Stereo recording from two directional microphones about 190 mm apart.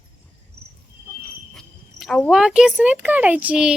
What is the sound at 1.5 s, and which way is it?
Cricket, centre (ahead or behind).